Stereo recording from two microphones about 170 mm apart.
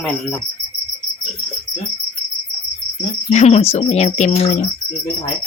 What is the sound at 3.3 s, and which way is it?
Speech, 40° left (ahead or behind).